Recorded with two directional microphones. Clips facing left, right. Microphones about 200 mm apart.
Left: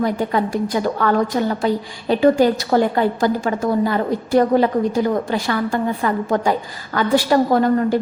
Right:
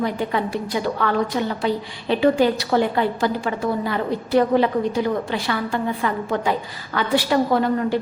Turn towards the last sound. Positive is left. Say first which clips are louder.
# left 4 dB
turn(degrees=45)  # may be behind; listen again after turning